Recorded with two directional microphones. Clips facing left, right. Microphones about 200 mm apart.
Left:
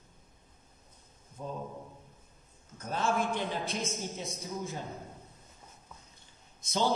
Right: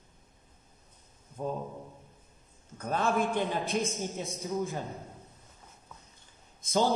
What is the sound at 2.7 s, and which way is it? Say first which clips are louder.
Speech: right 2 dB; 60° right (ahead or behind).